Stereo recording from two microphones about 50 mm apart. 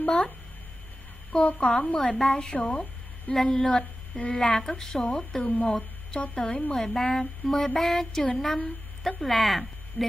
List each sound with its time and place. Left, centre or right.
0.0 s speech: left
1.3 s a child's voice: left
2.0 s mantra: centre
2.5 s a woman's voice: left
4.4 s mantra: centre
5.4 s a child's voice: left
6.7 s mantra: centre
9.0 s speech: centre